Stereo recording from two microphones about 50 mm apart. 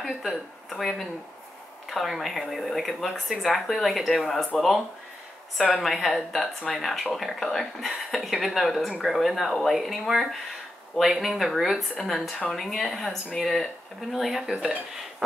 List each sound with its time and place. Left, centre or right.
0.2 s speech: centre